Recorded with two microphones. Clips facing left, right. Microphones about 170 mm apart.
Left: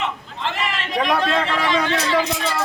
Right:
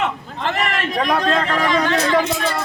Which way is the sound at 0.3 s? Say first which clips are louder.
Right 4 dB; 50° right (ahead or behind).